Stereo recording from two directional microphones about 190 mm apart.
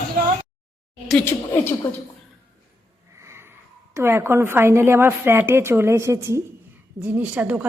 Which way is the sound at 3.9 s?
15° right (ahead or behind).